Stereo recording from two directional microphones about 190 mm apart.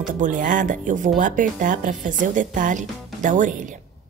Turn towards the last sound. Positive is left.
turn(degrees=-40)  # may be behind; listen again after turning